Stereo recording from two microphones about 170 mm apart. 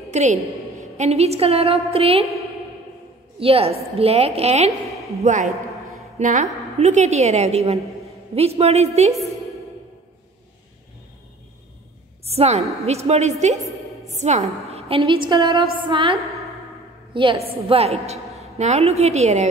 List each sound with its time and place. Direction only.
0.1 s a woman's voice: 40° right (ahead or behind)
3.3 s a woman's voice: 35° right (ahead or behind)
12.3 s a woman's voice: 40° right (ahead or behind)